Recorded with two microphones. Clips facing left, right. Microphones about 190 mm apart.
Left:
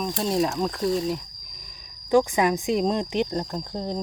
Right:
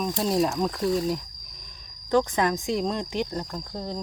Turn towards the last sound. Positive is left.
turn(degrees=20)  # may be behind; listen again after turning